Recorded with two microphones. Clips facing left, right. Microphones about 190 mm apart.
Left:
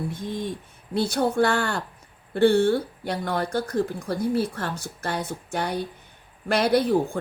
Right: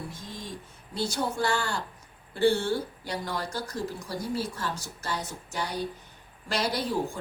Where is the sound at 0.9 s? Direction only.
60° left (ahead or behind).